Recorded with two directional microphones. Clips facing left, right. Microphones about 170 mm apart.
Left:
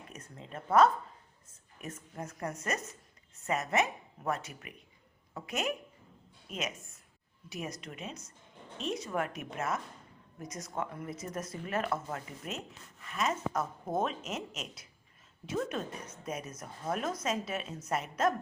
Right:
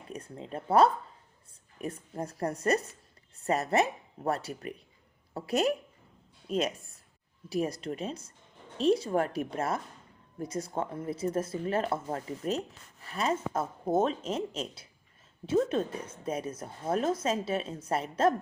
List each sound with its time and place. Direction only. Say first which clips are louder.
0.1 s a woman's voice: right 8 dB; 30° right (ahead or behind)